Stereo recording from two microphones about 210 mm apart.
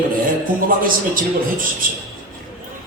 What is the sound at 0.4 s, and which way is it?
A man's voice, 40° right (ahead or behind).